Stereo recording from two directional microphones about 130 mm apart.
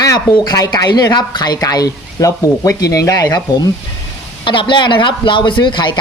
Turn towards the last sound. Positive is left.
turn(degrees=35)  # may be behind; listen again after turning